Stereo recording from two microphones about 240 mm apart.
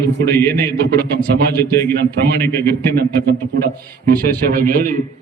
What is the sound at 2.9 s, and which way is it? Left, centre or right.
A man's voice, right.